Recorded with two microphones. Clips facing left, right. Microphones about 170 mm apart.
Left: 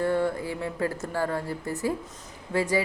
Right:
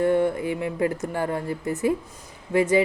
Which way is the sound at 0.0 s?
20° right (ahead or behind).